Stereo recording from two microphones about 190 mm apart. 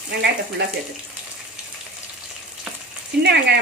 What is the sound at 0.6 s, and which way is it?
Speech, 65° right (ahead or behind).